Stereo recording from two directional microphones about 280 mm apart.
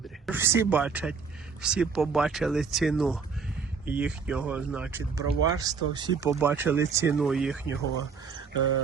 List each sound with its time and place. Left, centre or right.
0.3 s speech: centre
8.5 s speech: left